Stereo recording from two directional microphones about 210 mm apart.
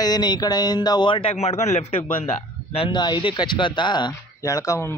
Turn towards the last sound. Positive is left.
turn(degrees=15)  # may be behind; listen again after turning